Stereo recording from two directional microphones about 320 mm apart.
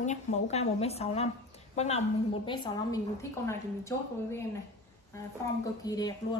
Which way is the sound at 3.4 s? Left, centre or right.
Centre.